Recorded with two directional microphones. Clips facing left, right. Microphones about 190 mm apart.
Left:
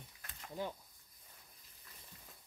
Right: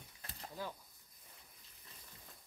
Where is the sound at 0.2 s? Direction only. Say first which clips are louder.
Right 5 dB; 35° right (ahead or behind).